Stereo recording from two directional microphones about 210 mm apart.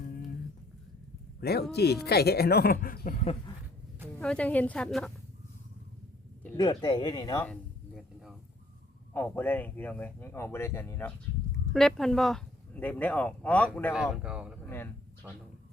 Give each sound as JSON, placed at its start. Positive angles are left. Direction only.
{"t": 1.4, "sound": "speech", "side_deg": 50}
{"t": 4.2, "sound": "speech", "side_deg": 5}
{"t": 6.6, "sound": "speech", "side_deg": 20}
{"t": 7.4, "sound": "a sound", "side_deg": 0}
{"t": 9.1, "sound": "a man's voice", "side_deg": 10}